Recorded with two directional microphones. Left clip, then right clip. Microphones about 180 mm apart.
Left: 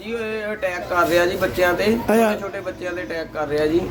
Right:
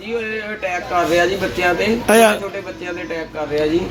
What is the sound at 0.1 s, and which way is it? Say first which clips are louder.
Speech: right 2 dB; 5° left (ahead or behind).